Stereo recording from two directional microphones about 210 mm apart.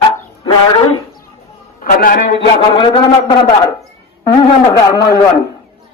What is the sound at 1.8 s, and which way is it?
Speech, 45° left (ahead or behind).